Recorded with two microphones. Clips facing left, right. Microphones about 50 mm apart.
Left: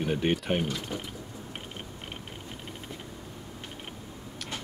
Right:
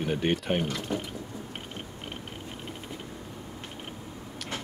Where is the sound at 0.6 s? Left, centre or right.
Right.